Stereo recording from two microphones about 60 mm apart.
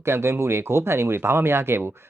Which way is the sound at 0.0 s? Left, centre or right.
Right.